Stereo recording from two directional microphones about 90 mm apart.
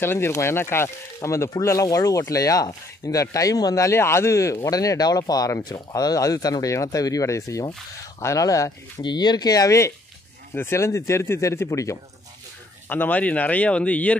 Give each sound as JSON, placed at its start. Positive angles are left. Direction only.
{"t": 0.0, "sound": "speech", "side_deg": 25}
{"t": 9.0, "sound": "speech", "side_deg": 50}
{"t": 12.8, "sound": "speech", "side_deg": 20}